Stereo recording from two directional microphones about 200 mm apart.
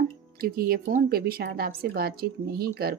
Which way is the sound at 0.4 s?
45° right (ahead or behind).